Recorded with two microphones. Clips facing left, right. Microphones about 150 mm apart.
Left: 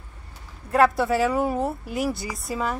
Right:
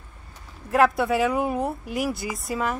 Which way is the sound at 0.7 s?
Centre (ahead or behind).